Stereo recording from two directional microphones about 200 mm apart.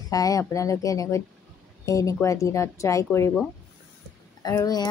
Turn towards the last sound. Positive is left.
turn(degrees=20)  # may be behind; listen again after turning